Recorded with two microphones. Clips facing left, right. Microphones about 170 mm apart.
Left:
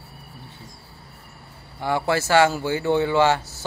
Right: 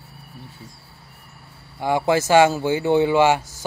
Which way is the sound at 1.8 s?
15° right (ahead or behind).